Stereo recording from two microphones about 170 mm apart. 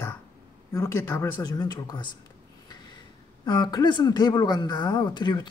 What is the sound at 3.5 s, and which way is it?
Speech, 25° left (ahead or behind).